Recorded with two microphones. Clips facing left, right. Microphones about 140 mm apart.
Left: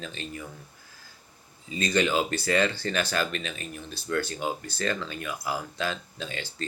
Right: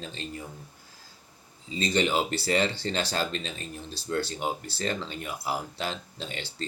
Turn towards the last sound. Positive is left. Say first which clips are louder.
# left 1 dB
turn(degrees=-25)  # may be behind; listen again after turning